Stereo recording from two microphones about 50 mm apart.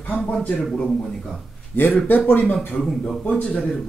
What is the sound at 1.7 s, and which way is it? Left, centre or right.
Speech, left.